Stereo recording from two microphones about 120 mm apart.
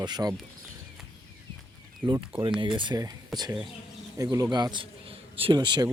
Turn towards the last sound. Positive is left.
turn(degrees=-35)  # may be behind; listen again after turning